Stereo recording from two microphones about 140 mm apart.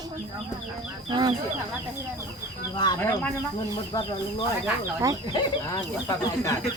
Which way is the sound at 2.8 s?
30° left (ahead or behind).